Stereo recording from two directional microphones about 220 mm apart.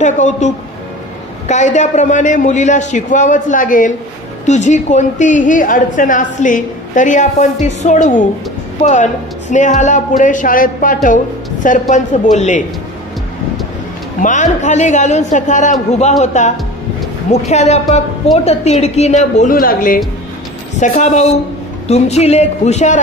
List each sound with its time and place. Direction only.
0.0 s a woman's voice: 35° left (ahead or behind)
1.5 s a woman's voice: 35° left (ahead or behind)
14.2 s a woman's voice: 35° left (ahead or behind)